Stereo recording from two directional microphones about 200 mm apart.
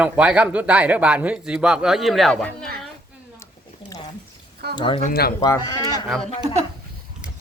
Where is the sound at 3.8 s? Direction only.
25° left (ahead or behind).